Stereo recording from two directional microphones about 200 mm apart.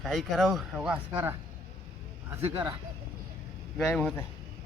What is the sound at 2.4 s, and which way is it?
Speech, 25° right (ahead or behind).